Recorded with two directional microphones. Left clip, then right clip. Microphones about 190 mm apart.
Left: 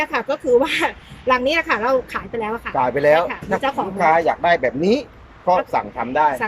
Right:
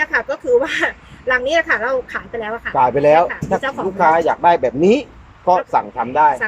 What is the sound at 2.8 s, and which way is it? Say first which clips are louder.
Speech: right 4 dB; 10° right (ahead or behind).